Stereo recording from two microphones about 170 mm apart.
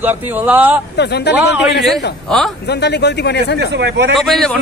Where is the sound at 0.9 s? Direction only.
80° left.